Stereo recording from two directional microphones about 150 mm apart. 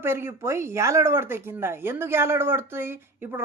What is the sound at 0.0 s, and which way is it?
Speech, 15° right (ahead or behind).